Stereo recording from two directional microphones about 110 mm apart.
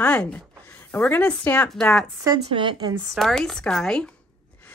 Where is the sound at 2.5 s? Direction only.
50° right (ahead or behind).